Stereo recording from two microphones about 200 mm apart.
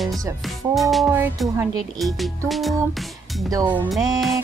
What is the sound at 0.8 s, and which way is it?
Music, centre (ahead or behind).